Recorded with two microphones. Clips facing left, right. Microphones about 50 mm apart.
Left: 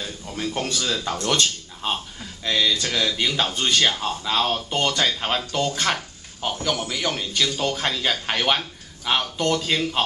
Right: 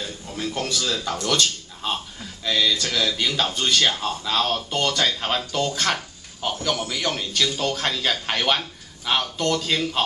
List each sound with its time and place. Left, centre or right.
0.0 s a sound: centre
0.7 s speech: centre
2.4 s speech: centre